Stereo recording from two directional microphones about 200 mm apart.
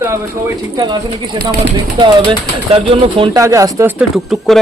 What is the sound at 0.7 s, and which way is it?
Speech, 20° right (ahead or behind).